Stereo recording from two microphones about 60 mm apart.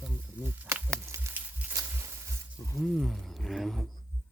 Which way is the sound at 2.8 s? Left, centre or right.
Centre.